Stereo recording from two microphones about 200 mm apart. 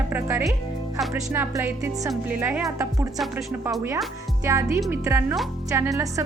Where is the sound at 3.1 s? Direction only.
Centre (ahead or behind).